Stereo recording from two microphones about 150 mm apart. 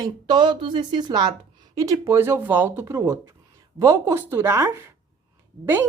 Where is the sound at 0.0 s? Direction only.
30° right (ahead or behind).